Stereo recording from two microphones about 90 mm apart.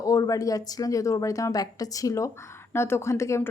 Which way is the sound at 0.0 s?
40° left (ahead or behind).